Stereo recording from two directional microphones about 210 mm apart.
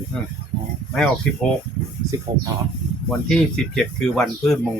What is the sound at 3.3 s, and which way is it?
Speech, centre (ahead or behind).